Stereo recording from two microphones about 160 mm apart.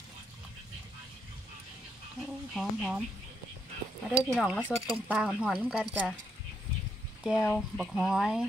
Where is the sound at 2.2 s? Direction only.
Centre (ahead or behind).